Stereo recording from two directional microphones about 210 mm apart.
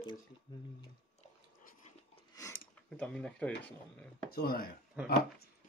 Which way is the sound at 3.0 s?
5° left (ahead or behind).